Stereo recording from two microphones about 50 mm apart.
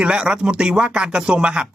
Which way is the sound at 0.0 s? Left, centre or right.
Centre.